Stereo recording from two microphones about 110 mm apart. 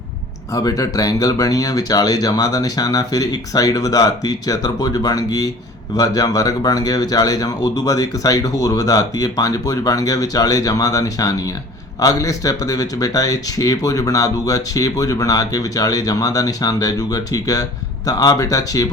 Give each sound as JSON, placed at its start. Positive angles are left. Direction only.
{"t": 0.5, "sound": "speech", "side_deg": 30}